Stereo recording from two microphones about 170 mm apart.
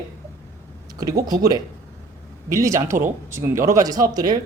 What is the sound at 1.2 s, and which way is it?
Speech, 20° right (ahead or behind).